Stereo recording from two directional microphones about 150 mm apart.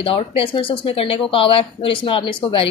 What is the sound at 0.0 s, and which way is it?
Speech, 40° left (ahead or behind).